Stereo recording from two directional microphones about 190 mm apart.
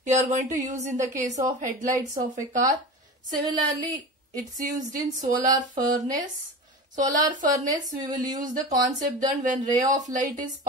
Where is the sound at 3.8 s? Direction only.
20° right (ahead or behind).